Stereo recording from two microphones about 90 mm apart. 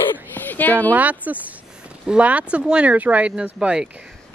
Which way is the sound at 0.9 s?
20° right (ahead or behind).